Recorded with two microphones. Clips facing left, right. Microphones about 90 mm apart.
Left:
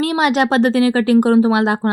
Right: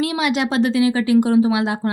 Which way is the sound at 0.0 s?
50° left (ahead or behind).